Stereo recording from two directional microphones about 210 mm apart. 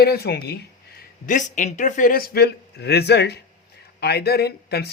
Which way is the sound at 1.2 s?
35° left (ahead or behind).